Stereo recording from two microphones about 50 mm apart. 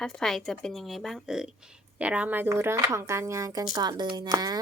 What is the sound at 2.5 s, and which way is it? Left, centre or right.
Speech, right.